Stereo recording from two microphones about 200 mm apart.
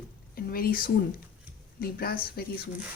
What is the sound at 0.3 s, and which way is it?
A woman's voice, 45° left (ahead or behind).